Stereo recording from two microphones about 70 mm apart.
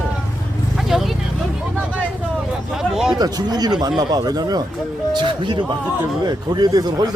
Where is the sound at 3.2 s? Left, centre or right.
Right.